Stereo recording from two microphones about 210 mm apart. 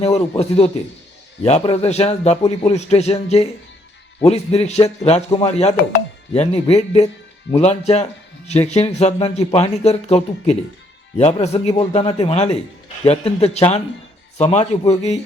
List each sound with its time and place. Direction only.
0.0 s speech: 30° left (ahead or behind)